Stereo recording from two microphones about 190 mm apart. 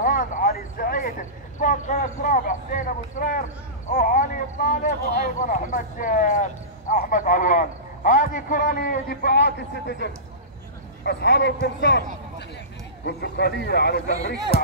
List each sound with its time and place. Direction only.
0.0 s a sound: 45° left (ahead or behind)
1.6 s speech: 45° left (ahead or behind); by 12.0 s 60° left (ahead or behind)
13.0 s speech: 55° left (ahead or behind)